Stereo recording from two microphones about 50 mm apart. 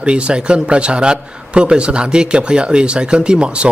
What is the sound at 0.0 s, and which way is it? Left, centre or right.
A man's voice, right.